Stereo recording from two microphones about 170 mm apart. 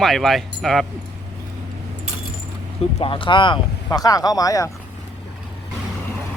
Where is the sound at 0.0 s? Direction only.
Centre (ahead or behind).